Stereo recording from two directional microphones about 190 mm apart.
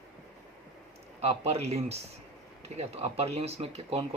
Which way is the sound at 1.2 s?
35° right (ahead or behind).